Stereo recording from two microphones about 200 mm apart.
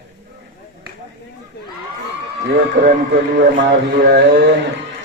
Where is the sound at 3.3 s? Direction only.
50° right (ahead or behind).